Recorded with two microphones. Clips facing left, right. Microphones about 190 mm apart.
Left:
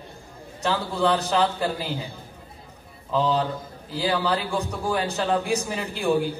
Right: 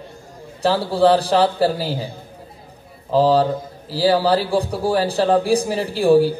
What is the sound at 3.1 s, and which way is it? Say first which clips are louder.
A man's voice: right 8 dB; 35° right (ahead or behind).